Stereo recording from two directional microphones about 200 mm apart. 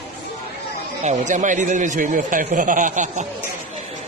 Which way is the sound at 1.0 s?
40° right (ahead or behind).